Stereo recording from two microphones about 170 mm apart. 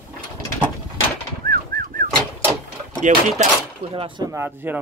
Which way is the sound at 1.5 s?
55° right (ahead or behind).